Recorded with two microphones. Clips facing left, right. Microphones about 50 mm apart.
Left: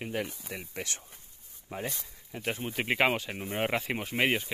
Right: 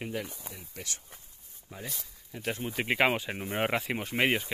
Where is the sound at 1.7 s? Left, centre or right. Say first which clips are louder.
Left 6 dB; left.